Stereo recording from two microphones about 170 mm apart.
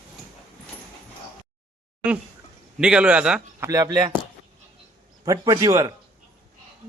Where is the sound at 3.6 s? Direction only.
20° right (ahead or behind).